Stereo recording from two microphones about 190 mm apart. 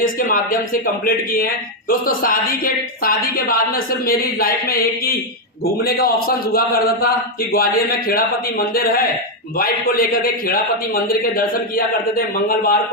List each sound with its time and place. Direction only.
0.0 s speech: 50° left (ahead or behind)